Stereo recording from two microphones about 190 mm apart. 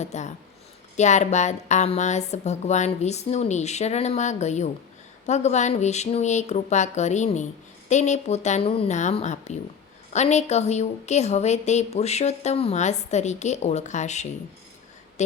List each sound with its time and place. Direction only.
0.0 s a woman's voice: 35° left (ahead or behind)